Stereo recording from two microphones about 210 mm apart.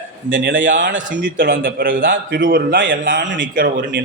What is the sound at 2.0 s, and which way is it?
Speech, 60° right (ahead or behind).